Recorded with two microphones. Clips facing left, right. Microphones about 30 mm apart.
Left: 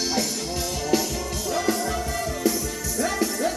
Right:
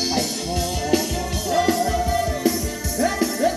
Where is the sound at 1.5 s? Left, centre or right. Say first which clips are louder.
Right 5 dB; right.